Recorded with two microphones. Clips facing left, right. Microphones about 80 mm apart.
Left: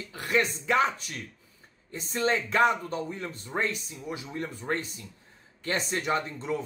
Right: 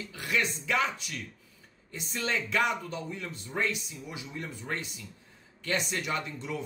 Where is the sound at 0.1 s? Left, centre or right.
Left.